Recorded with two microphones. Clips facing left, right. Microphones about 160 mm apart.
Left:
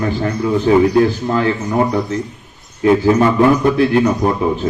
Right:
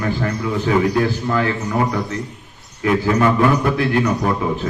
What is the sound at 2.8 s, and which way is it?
A man's voice, 25° left (ahead or behind).